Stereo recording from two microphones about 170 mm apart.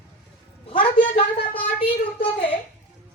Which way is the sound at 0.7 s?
30° left (ahead or behind).